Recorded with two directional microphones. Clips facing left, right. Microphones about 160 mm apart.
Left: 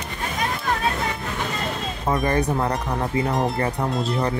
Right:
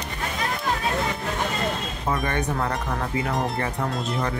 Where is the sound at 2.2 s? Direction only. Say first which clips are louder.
Left 4 dB; 35° left (ahead or behind).